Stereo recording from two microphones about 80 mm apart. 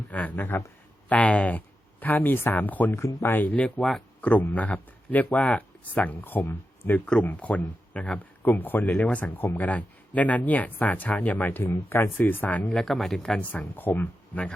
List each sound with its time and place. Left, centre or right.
0.1 s speech: centre
2.9 s speech: left
3.2 s speech: left
12.8 s speech: centre
13.4 s speech: left